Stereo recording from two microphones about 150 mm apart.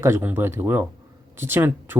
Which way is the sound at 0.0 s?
15° right (ahead or behind).